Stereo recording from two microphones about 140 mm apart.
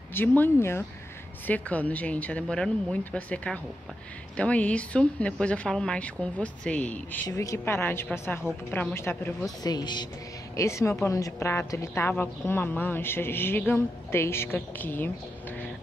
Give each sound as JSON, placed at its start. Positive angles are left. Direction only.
{"t": 0.1, "sound": "a woman's voice", "side_deg": 15}
{"t": 7.2, "sound": "a woman's voice", "side_deg": 25}
{"t": 9.6, "sound": "a woman's voice", "side_deg": 30}